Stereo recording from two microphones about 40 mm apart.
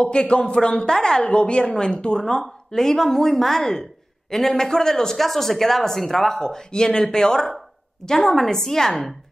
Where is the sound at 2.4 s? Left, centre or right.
Centre.